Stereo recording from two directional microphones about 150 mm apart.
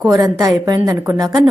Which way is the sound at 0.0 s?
25° right (ahead or behind).